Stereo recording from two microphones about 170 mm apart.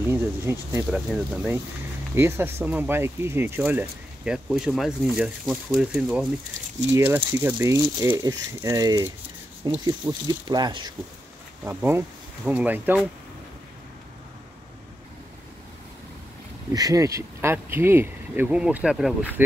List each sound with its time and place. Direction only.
0.1 s speech: 15° right (ahead or behind)
0.8 s speech: centre (ahead or behind); by 10.9 s 25° right (ahead or behind)
11.6 s speech: 10° right (ahead or behind)
16.7 s speech: 20° right (ahead or behind); by 19.1 s 5° right (ahead or behind)